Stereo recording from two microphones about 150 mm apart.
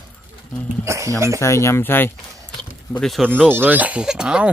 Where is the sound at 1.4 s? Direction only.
20° left (ahead or behind).